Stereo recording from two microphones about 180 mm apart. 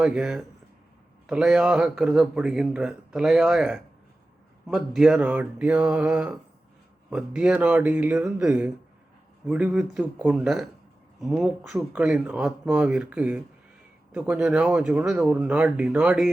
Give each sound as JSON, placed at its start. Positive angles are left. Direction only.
{"t": 0.0, "sound": "speech", "side_deg": -5}